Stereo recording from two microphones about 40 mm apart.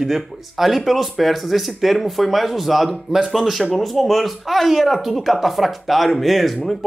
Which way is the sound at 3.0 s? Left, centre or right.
Centre.